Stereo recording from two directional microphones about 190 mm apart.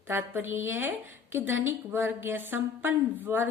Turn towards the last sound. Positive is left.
turn(degrees=-10)  # may be behind; listen again after turning